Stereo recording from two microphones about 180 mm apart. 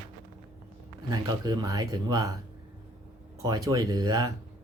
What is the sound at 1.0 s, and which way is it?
Speech, 20° right (ahead or behind).